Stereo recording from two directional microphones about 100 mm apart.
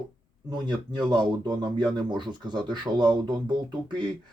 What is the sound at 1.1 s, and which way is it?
Speech, 50° right (ahead or behind).